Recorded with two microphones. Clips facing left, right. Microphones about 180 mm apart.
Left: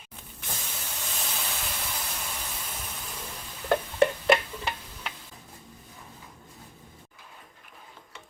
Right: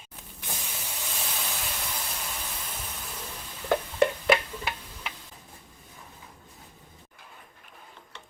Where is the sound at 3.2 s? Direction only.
10° left (ahead or behind).